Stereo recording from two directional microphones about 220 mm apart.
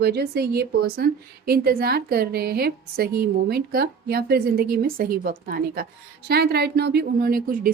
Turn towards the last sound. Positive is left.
turn(degrees=-40)  # may be behind; listen again after turning